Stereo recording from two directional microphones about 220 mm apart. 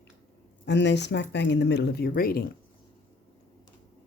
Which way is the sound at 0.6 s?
50° left (ahead or behind).